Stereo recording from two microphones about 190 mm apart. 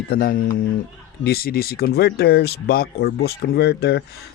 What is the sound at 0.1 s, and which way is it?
Speech, 50° left (ahead or behind).